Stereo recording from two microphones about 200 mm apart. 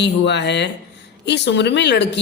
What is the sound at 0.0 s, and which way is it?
Speech, 60° left (ahead or behind).